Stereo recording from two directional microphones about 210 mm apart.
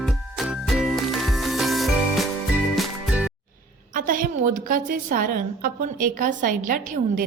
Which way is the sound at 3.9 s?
40° right (ahead or behind).